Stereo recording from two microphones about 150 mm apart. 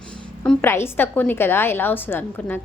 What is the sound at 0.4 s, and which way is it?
A woman's voice, 15° left (ahead or behind).